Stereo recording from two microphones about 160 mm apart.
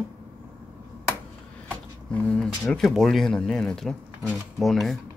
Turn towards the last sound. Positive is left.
turn(degrees=0)  # may be behind; listen again after turning